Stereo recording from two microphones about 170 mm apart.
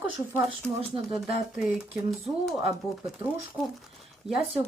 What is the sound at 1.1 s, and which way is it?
Speech, centre (ahead or behind).